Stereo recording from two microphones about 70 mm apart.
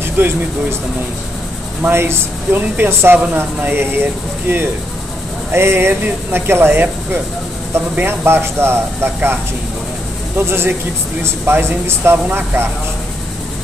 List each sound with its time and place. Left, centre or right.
0.2 s speech: right
1.8 s speech: right